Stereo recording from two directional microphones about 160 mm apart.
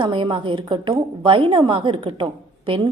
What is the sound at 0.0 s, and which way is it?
A woman's voice, 30° right (ahead or behind).